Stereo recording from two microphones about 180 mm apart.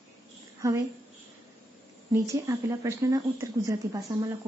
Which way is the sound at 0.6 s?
15° right (ahead or behind).